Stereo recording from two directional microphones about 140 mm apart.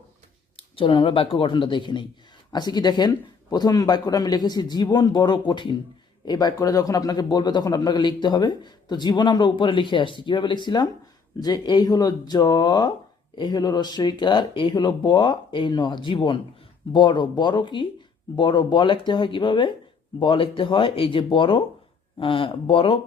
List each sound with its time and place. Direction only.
0.5 s a man's voice: 40° left (ahead or behind)